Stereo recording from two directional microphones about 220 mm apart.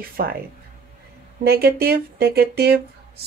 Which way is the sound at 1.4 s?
45° right (ahead or behind).